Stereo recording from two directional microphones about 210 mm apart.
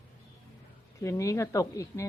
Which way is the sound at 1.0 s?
15° left (ahead or behind).